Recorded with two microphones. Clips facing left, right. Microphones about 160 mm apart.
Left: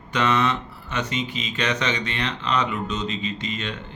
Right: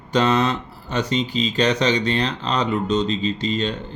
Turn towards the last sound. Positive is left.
turn(degrees=-35)  # may be behind; listen again after turning